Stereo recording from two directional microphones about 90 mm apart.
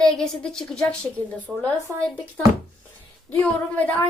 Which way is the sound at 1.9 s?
35° right (ahead or behind).